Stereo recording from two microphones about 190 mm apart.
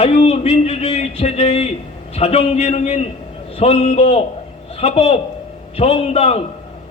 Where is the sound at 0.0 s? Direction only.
35° left (ahead or behind).